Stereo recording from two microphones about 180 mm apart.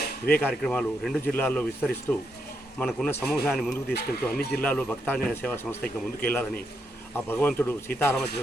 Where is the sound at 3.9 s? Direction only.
60° left (ahead or behind).